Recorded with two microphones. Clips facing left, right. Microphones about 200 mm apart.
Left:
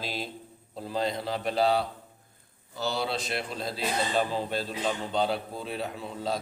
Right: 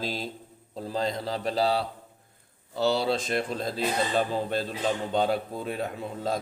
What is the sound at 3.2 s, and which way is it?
A man's voice, 45° right (ahead or behind).